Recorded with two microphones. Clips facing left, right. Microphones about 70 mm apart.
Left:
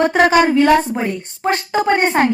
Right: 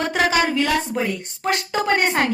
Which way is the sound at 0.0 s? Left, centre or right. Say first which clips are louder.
Left 7 dB; left.